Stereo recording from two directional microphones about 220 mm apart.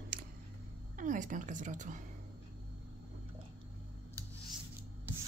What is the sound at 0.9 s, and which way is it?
Speech, 35° right (ahead or behind).